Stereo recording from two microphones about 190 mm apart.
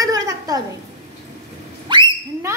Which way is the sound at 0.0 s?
20° right (ahead or behind).